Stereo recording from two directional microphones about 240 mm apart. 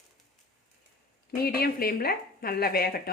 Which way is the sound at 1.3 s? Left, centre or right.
Left.